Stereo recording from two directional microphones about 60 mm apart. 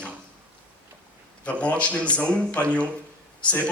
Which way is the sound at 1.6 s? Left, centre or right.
Left.